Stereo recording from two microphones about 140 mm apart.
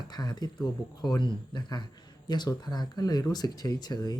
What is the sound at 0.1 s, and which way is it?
Speech, 30° left (ahead or behind).